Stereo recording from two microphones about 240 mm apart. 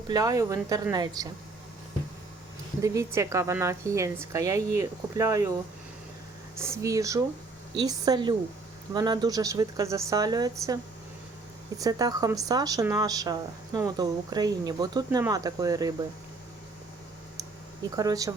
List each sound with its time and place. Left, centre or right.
0.1 s a woman's voice: centre
2.8 s a woman's voice: centre
6.6 s a woman's voice: centre
11.8 s a woman's voice: centre
17.9 s a woman's voice: centre